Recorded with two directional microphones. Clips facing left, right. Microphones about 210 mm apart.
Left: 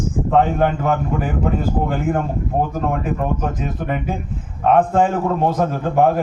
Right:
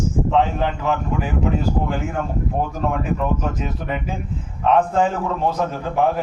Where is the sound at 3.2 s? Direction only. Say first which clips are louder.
Left 1 dB; 50° left (ahead or behind).